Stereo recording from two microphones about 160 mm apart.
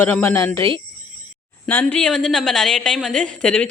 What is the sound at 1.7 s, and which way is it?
A woman's voice, 10° left (ahead or behind).